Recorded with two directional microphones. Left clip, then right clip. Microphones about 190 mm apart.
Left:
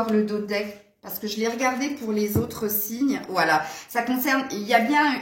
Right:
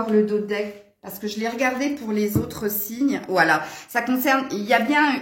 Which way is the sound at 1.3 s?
55° right (ahead or behind).